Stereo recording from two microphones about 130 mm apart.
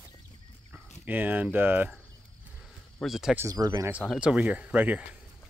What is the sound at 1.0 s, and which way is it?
Speech, 15° right (ahead or behind).